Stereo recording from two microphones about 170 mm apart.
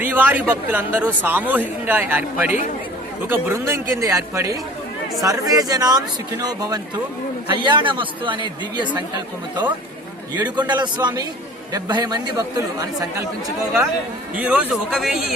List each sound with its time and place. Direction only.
0.0 s speech: 10° right (ahead or behind); by 9.0 s 25° right (ahead or behind)
10.4 s speech: 25° right (ahead or behind)
14.3 s speech: 10° right (ahead or behind)